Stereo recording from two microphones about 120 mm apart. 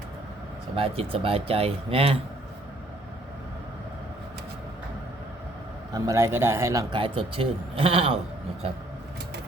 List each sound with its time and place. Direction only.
0.8 s speech: 50° right (ahead or behind)
5.9 s a man's voice: 25° right (ahead or behind)
6.9 s speech: 45° right (ahead or behind)